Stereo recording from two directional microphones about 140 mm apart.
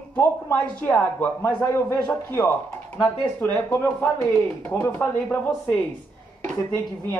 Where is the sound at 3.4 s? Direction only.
15° left (ahead or behind).